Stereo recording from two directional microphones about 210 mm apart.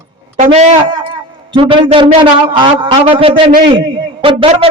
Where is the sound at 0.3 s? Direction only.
35° right (ahead or behind).